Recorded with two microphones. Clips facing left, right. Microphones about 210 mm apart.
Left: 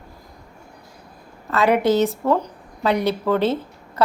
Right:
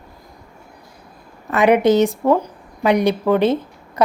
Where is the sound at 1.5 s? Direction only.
15° right (ahead or behind).